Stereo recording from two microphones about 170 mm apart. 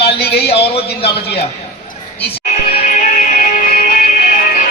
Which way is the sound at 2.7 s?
55° left (ahead or behind).